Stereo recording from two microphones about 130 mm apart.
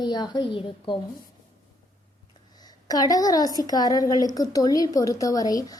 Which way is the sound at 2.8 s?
30° left (ahead or behind).